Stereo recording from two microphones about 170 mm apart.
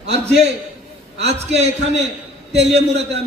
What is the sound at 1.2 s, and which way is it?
A man's voice, 40° right (ahead or behind).